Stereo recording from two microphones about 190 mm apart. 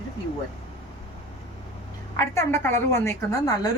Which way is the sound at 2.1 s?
15° left (ahead or behind).